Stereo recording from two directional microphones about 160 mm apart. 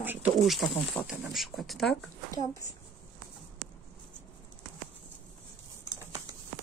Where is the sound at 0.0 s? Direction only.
10° right (ahead or behind).